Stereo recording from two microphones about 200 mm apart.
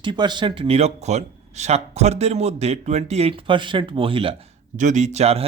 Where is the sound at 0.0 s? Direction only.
20° right (ahead or behind).